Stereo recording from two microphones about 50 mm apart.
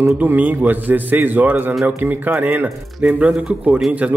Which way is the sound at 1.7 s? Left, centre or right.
Centre.